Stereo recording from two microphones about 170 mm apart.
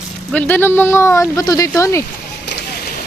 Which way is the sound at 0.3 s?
10° left (ahead or behind).